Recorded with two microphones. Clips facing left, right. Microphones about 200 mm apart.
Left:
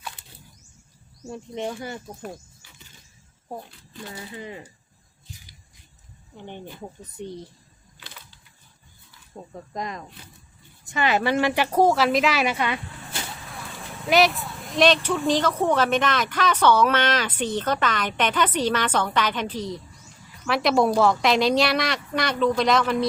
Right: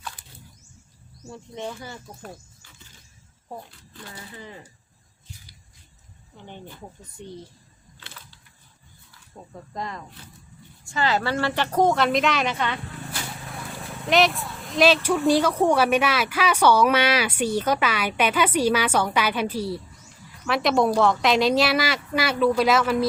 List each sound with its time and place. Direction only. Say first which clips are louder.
1.3 s a woman's voice: left 4 dB; 15° left (ahead or behind)
3.9 s a woman's voice: left 4 dB; 20° left (ahead or behind)
6.3 s a woman's voice: left 3 dB; 15° left (ahead or behind)
7.9 s a sound: even; 15° left (ahead or behind)
9.7 s a woman's voice: left 1 dB; 15° left (ahead or behind)
14.1 s a woman's voice: left 1 dB; centre (ahead or behind)